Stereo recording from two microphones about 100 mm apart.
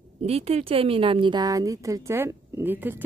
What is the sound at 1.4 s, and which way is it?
Speech, 35° right (ahead or behind).